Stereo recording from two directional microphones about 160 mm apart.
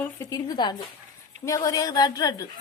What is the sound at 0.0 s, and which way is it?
Speech, 20° left (ahead or behind).